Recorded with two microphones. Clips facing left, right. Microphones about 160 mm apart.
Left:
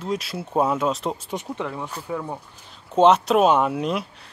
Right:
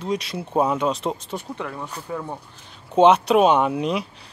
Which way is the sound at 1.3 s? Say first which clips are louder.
Left 2 dB; 20° left (ahead or behind).